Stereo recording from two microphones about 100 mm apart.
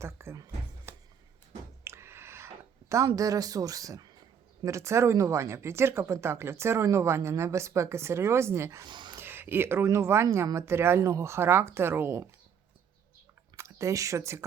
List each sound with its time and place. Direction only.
0.0 s speech: 25° right (ahead or behind)
1.8 s a sound: 25° right (ahead or behind)
3.2 s speech: 35° right (ahead or behind)
8.8 s speech: 50° right (ahead or behind)
9.1 s speech: 20° right (ahead or behind)
13.6 s speech: 30° right (ahead or behind)